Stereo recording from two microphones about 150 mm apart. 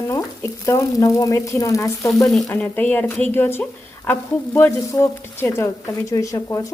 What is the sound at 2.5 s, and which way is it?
A woman's voice, 10° left (ahead or behind).